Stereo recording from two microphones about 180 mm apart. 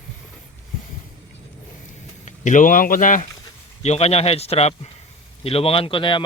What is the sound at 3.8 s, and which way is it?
A man's voice, 35° left (ahead or behind).